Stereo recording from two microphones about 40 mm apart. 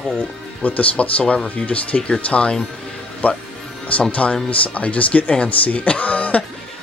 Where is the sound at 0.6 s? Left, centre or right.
Left.